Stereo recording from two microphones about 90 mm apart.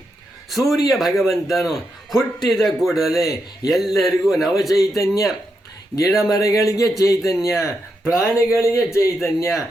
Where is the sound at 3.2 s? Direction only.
40° left (ahead or behind).